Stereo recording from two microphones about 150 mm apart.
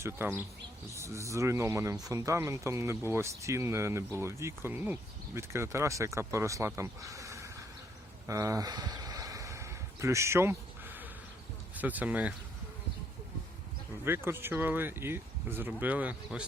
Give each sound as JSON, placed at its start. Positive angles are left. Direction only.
{"t": 0.0, "sound": "speech", "side_deg": -15}
{"t": 8.3, "sound": "a sound", "side_deg": -20}
{"t": 11.7, "sound": "speech", "side_deg": -10}
{"t": 14.0, "sound": "speech", "side_deg": -15}